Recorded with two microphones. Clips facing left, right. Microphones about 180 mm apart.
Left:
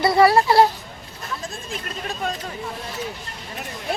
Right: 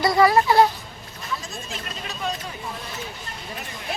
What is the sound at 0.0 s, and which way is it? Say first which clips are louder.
Speech: left 2 dB; 30° left (ahead or behind).